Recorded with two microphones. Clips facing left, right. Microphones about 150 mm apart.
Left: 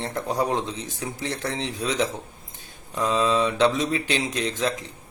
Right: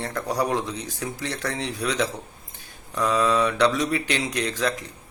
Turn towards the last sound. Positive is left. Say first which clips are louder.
# even
turn(degrees=20)  # may be behind; listen again after turning